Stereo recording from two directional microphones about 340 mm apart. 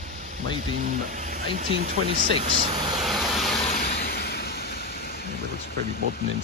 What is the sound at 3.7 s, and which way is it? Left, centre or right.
Vehicle, left.